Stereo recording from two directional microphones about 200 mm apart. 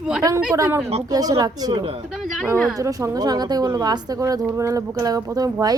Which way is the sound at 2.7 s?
15° right (ahead or behind).